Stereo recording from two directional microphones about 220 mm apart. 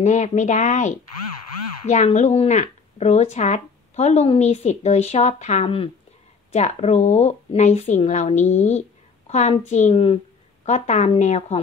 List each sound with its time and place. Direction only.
0.0 s speech: 35° left (ahead or behind)